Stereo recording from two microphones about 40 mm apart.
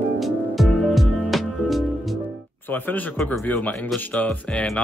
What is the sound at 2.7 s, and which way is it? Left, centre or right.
Speech, left.